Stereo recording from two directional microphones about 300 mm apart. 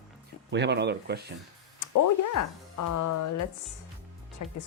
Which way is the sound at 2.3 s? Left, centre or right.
Left.